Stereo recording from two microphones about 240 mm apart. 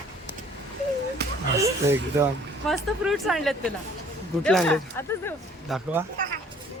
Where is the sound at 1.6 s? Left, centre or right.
Centre.